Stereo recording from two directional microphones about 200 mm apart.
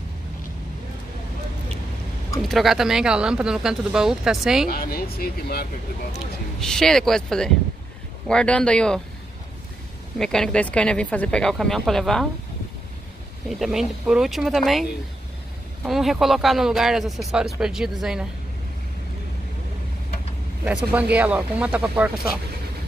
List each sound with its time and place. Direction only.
2.4 s speech: centre (ahead or behind)
4.6 s speech: 50° left (ahead or behind)
6.6 s speech: 5° left (ahead or behind)
10.1 s speech: centre (ahead or behind)
13.5 s speech: centre (ahead or behind)
20.6 s speech: 5° right (ahead or behind)